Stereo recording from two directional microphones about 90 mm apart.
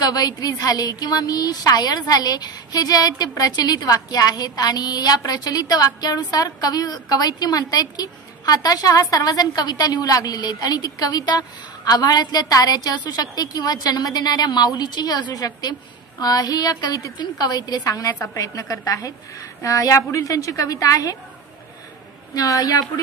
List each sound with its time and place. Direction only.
0.0 s a woman's voice: 45° left (ahead or behind)
22.3 s a woman's voice: 40° left (ahead or behind)